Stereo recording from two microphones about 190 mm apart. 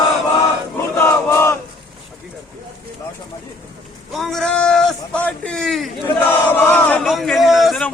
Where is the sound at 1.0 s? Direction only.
15° left (ahead or behind).